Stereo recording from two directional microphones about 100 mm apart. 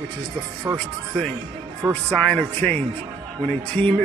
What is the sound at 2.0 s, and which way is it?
A man's voice, 10° left (ahead or behind).